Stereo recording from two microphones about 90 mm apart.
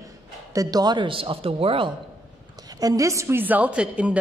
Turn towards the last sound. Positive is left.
turn(degrees=-15)  # may be behind; listen again after turning